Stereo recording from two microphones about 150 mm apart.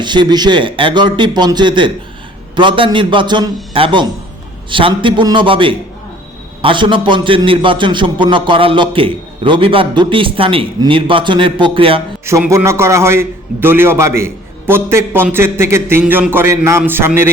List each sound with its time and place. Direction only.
0.0 s a man's voice: 30° right (ahead or behind)
12.5 s a man's voice: 20° right (ahead or behind)